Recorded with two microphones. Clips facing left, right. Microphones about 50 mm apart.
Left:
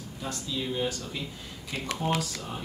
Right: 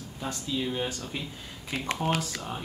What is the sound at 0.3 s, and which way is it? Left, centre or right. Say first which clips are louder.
Speech: right 2 dB; right.